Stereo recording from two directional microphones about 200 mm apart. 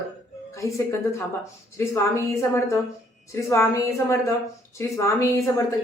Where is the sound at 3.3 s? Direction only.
15° left (ahead or behind).